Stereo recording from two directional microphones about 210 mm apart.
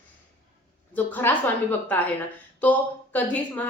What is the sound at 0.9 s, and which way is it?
Speech, 10° left (ahead or behind).